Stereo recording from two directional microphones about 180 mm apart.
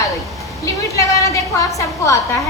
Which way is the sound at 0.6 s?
20° left (ahead or behind).